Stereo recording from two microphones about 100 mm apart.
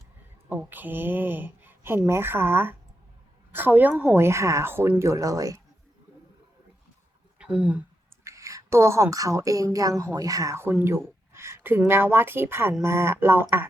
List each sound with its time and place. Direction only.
0.4 s a woman's voice: 20° right (ahead or behind); by 5.5 s 35° right (ahead or behind)
7.3 s speech: 10° right (ahead or behind)
8.2 s a woman's voice: 30° right (ahead or behind)